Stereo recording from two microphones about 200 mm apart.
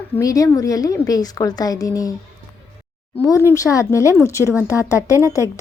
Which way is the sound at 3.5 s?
15° left (ahead or behind).